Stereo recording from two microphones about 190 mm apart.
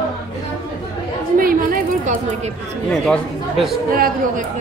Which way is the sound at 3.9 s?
50° right (ahead or behind).